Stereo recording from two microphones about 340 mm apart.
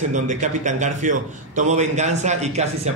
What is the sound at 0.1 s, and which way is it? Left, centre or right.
A man's voice, right.